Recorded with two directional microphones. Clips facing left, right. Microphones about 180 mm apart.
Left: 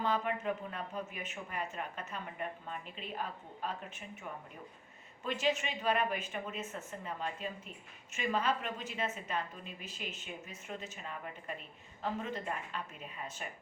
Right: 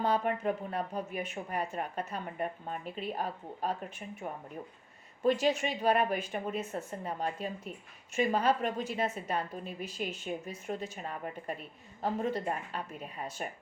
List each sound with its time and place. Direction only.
0.0 s a woman's voice: 40° right (ahead or behind)
5.2 s a woman's voice: 35° right (ahead or behind)